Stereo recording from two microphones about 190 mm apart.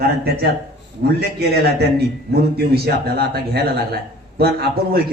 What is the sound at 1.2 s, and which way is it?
A man's voice, 55° right (ahead or behind).